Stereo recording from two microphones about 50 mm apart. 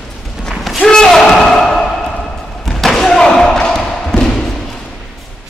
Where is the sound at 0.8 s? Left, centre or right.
Centre.